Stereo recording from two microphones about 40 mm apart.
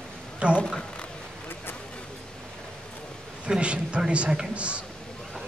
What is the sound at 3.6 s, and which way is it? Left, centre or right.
Speech, right.